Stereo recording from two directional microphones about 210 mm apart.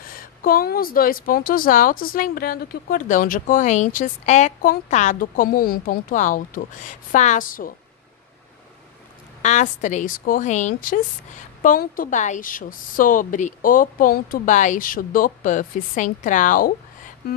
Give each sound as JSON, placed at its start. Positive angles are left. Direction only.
{"t": 0.0, "sound": "speech", "side_deg": 45}
{"t": 9.4, "sound": "speech", "side_deg": 35}